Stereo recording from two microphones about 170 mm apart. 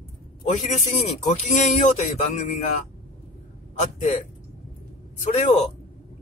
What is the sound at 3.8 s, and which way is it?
Speech, 40° left (ahead or behind).